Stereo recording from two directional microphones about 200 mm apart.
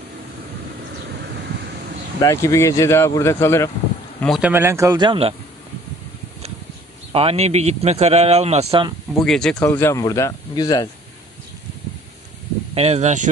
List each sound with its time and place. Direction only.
2.1 s speech: 15° left (ahead or behind)
4.4 s speech: 10° right (ahead or behind)
7.1 s a man's voice: 30° right (ahead or behind)
9.2 s speech: 5° left (ahead or behind)
9.6 s speech: 15° left (ahead or behind)
12.7 s a man's voice: 30° right (ahead or behind)